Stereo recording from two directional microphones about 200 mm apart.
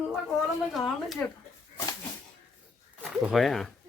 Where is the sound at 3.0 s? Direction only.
Centre (ahead or behind).